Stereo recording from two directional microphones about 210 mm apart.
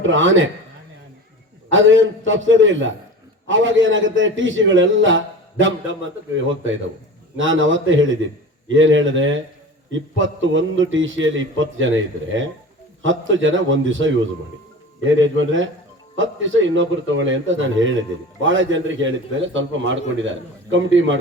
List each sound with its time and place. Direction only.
0.0 s a man's voice: 65° right (ahead or behind)
1.7 s a man's voice: 65° right (ahead or behind)